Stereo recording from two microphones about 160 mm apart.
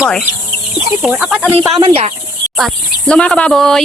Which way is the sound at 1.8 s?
35° right (ahead or behind).